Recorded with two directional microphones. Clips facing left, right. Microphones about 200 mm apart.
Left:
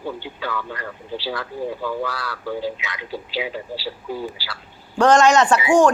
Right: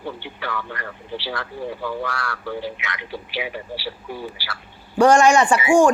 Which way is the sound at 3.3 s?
20° right (ahead or behind).